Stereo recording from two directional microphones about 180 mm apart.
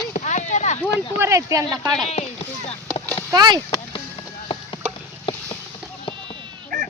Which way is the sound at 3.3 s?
25° right (ahead or behind).